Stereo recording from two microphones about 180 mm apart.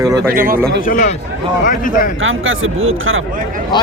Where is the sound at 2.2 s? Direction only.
90° right.